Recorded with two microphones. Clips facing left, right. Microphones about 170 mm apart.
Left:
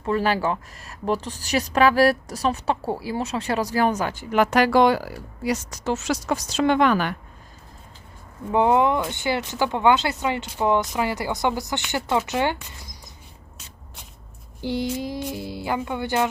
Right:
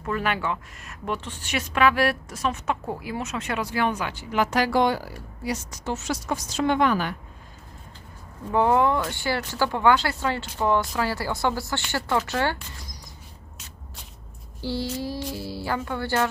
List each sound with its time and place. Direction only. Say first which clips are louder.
0.0 s a woman's voice: left 5 dB; 30° left (ahead or behind); by 7.2 s 70° left (ahead or behind)
8.5 s speech: left 2 dB; 20° left (ahead or behind)
14.6 s speech: left 3 dB; 20° left (ahead or behind)